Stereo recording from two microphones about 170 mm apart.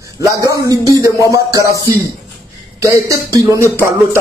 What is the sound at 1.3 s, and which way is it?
Speech, 20° right (ahead or behind).